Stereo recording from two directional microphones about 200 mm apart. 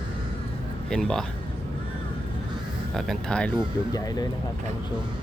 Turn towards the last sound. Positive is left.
turn(degrees=20)  # may be behind; listen again after turning